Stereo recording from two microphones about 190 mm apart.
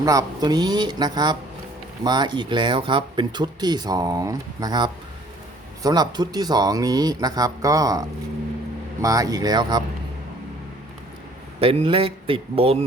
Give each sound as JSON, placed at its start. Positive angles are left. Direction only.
{"t": 0.0, "sound": "speech", "side_deg": -20}
{"t": 11.6, "sound": "speech", "side_deg": -30}